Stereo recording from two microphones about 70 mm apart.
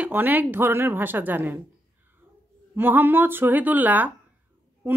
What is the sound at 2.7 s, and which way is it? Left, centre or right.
Speech, right.